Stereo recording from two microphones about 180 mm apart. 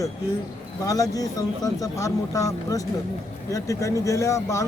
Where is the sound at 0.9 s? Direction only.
20° left (ahead or behind).